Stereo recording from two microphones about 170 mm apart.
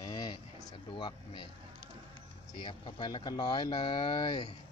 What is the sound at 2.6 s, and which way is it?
Speech, 30° left (ahead or behind).